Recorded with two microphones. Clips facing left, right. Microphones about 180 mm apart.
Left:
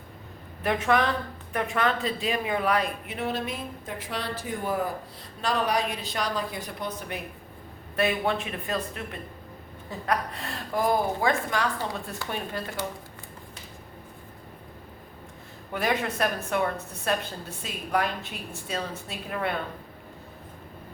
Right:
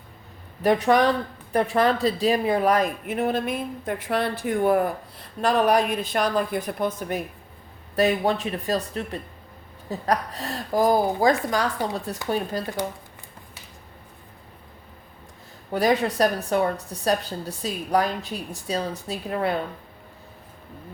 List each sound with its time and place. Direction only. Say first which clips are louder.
0.6 s a woman's voice: right 6 dB; 35° right (ahead or behind)
7.9 s a woman's voice: right 4 dB; 35° right (ahead or behind)
15.7 s a woman's voice: right 6 dB; 35° right (ahead or behind)